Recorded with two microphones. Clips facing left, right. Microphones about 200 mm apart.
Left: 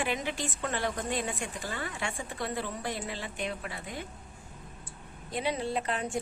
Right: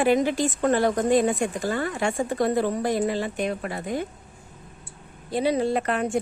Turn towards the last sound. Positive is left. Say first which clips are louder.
# right 8 dB
turn(degrees=-60)  # may be behind; listen again after turning